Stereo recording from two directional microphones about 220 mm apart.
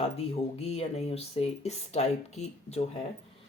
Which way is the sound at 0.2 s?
30° left (ahead or behind).